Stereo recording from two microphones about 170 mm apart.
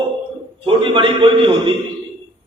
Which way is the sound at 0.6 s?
30° right (ahead or behind).